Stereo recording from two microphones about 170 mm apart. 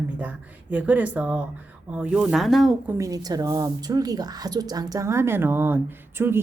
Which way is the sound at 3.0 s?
20° right (ahead or behind).